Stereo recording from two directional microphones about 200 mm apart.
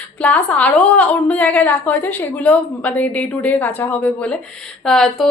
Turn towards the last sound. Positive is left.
turn(degrees=5)  # may be behind; listen again after turning